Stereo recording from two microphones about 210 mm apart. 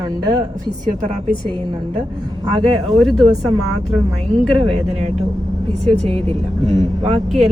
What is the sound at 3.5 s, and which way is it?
Speech, 90° right.